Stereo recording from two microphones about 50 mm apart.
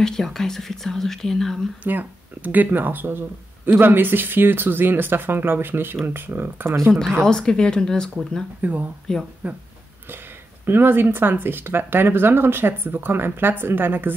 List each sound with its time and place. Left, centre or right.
0.0 s speech: centre
1.8 s speech: right
7.2 s speech: centre
8.5 s speech: right
9.1 s speech: centre
10.6 s speech: right